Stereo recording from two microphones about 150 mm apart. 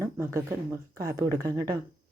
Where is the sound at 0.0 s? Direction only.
20° right (ahead or behind).